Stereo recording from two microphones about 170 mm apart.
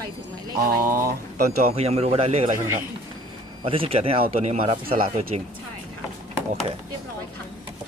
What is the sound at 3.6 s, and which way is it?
A man's voice, 35° right (ahead or behind).